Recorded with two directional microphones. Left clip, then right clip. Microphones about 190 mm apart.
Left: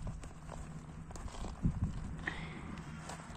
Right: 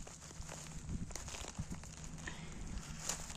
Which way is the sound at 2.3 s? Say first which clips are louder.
Left 8 dB; 10° right (ahead or behind).